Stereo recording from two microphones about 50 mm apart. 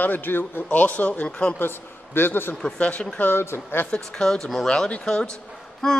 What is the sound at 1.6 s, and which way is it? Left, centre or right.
Speech, left.